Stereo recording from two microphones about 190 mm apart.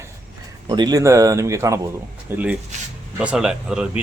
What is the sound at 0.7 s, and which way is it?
Speech, 20° right (ahead or behind).